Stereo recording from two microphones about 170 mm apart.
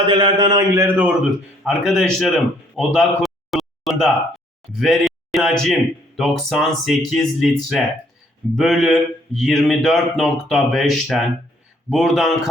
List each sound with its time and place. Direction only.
0.1 s speech: 25° right (ahead or behind); by 2.3 s centre (ahead or behind)
2.7 s a sound: centre (ahead or behind)
4.8 s speech: centre (ahead or behind)